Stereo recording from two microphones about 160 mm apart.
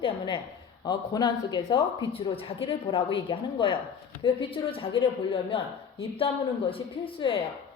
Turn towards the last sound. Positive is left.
turn(degrees=35)  # may be behind; listen again after turning